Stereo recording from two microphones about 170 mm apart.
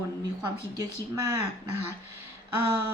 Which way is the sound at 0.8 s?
20° right (ahead or behind).